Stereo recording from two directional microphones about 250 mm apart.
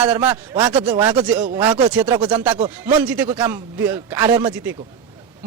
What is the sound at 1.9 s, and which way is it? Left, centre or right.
A man's voice, centre.